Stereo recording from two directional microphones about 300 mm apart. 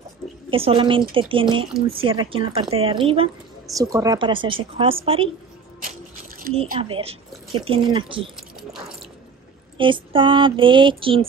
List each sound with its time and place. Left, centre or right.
0.5 s speech: centre
6.4 s speech: centre
9.8 s speech: centre